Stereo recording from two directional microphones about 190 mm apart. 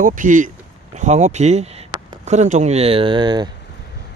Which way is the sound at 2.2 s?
35° right (ahead or behind).